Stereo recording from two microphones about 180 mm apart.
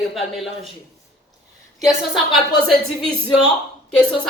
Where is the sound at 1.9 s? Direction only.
Centre (ahead or behind).